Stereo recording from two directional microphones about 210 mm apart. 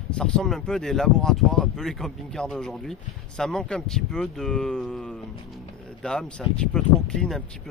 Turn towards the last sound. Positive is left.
turn(degrees=5)  # may be behind; listen again after turning